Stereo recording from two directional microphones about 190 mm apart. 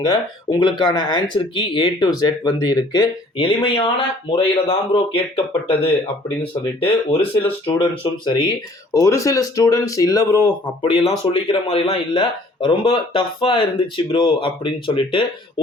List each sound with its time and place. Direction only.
0.0 s speech: 20° left (ahead or behind)